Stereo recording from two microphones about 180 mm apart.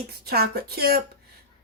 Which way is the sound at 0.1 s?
60° right (ahead or behind).